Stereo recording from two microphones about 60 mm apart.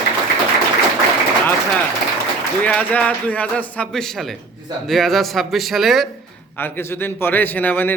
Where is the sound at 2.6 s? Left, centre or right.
Left.